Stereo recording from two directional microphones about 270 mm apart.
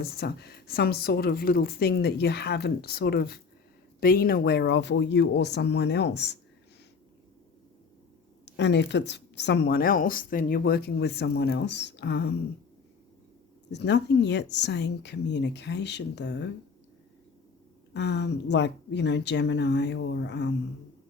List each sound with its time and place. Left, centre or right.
0.0 s speech: left
8.4 s speech: left
13.7 s speech: left
17.9 s speech: left